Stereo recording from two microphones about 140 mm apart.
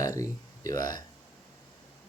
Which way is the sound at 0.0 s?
25° left (ahead or behind).